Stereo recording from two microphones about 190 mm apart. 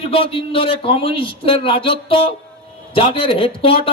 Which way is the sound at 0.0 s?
30° left (ahead or behind).